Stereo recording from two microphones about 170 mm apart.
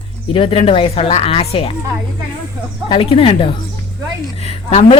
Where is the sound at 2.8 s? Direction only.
35° left (ahead or behind).